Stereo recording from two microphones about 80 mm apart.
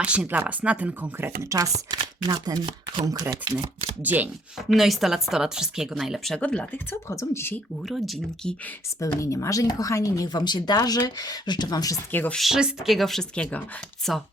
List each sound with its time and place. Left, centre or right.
0.0 s speech: centre
1.2 s speech: right
1.9 s speech: right
3.0 s speech: right
4.0 s speech: right
4.7 s speech: centre
6.4 s speech: centre
6.9 s speech: left
7.9 s speech: centre
9.0 s speech: left
12.3 s speech: centre
13.3 s speech: centre